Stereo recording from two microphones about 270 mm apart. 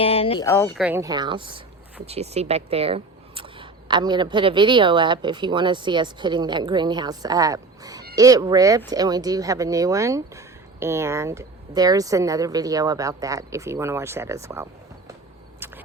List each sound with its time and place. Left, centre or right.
0.0 s speech: left
0.4 s speech: centre
0.8 s speech: centre
15.6 s a sound: centre